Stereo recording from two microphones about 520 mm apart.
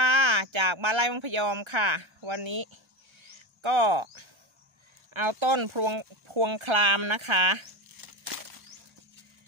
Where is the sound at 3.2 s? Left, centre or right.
Right.